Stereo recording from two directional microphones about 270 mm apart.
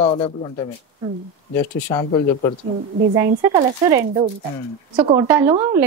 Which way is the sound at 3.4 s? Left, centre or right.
Centre.